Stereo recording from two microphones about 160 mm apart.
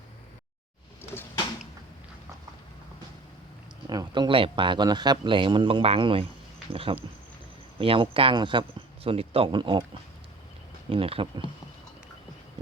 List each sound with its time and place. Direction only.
3.8 s speech: 25° right (ahead or behind)
10.8 s speech: 35° right (ahead or behind)